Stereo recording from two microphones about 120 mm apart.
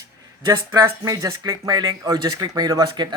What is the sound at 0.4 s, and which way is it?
Speech, 30° right (ahead or behind).